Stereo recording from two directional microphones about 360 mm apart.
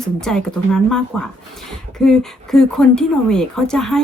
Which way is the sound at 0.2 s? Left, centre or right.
Centre.